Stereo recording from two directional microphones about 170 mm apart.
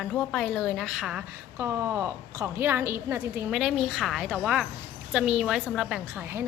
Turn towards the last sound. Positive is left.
turn(degrees=0)  # may be behind; listen again after turning